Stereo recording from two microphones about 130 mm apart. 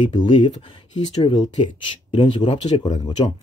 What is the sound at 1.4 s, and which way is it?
Speech, 65° left (ahead or behind).